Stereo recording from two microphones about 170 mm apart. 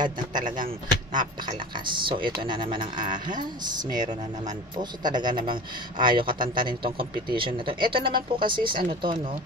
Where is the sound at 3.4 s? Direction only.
25° right (ahead or behind).